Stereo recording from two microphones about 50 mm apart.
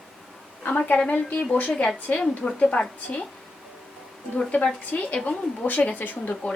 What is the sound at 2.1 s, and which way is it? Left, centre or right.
Speech, left.